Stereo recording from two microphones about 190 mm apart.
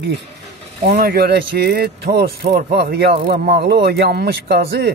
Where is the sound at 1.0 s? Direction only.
55° right (ahead or behind).